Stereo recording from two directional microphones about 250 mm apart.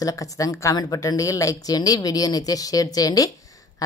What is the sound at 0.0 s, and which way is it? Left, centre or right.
A woman's voice, centre.